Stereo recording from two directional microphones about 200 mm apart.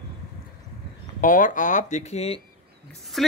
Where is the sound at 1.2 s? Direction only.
40° left (ahead or behind).